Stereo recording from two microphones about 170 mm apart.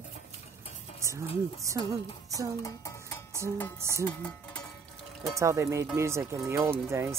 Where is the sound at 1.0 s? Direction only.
15° right (ahead or behind).